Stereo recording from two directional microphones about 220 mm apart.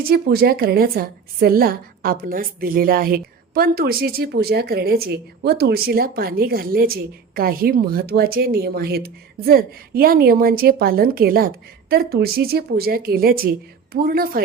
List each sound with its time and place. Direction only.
0.0 s a woman's voice: 45° right (ahead or behind)